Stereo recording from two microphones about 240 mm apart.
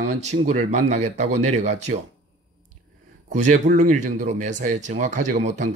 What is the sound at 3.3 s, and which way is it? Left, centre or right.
Speech, right.